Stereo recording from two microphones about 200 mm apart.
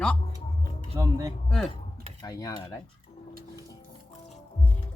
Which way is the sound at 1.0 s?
20° right (ahead or behind).